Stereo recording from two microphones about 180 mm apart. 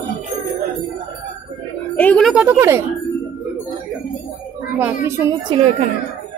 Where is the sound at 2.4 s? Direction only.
15° right (ahead or behind).